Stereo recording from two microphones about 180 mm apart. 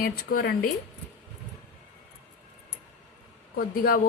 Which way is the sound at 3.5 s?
55° left (ahead or behind).